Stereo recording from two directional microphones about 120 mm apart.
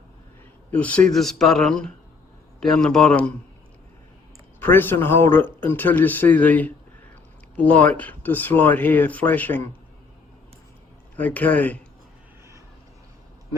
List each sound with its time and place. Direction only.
0.7 s speech: 10° left (ahead or behind)
4.6 s speech: 15° left (ahead or behind)
11.2 s speech: 15° left (ahead or behind)